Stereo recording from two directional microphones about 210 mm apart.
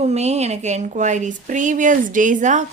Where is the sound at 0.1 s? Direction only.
30° right (ahead or behind).